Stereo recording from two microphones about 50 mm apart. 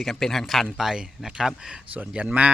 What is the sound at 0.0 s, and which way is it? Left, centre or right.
Speech, centre.